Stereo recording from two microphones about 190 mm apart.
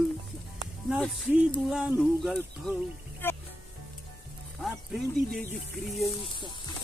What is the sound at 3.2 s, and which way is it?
Music, 10° left (ahead or behind).